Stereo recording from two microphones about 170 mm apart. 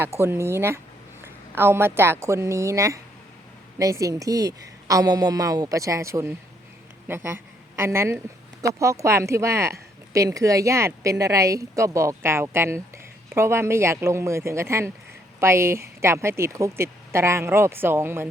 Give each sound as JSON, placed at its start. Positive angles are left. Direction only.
{"t": 0.2, "sound": "a woman's voice", "side_deg": -15}